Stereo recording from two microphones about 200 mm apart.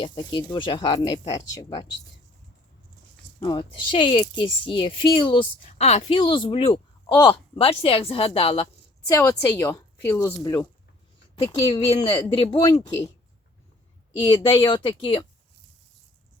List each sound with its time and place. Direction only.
0.0 s speech: 25° left (ahead or behind)
3.4 s speech: 25° left (ahead or behind)
9.0 s speech: 15° left (ahead or behind)
11.7 s speech: 25° left (ahead or behind)
14.2 s speech: 25° left (ahead or behind)